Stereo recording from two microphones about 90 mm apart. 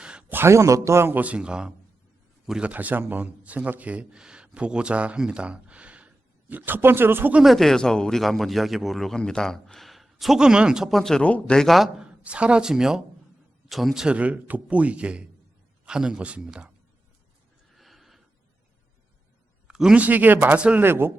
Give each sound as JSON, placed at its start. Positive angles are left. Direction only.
{"t": 0.0, "sound": "a sound", "side_deg": -10}
{"t": 0.3, "sound": "a man's voice", "side_deg": -30}
{"t": 7.3, "sound": "speech", "side_deg": 0}
{"t": 12.2, "sound": "a man's voice", "side_deg": -10}
{"t": 17.7, "sound": "snort", "side_deg": 0}
{"t": 19.6, "sound": "a man's voice", "side_deg": -10}